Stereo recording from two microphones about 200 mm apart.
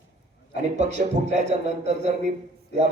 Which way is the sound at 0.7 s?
35° right (ahead or behind).